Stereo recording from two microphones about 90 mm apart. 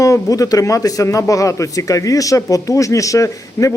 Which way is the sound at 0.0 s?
40° left (ahead or behind).